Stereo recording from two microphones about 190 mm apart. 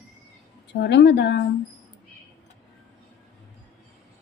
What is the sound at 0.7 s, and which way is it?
Speech, 65° left (ahead or behind).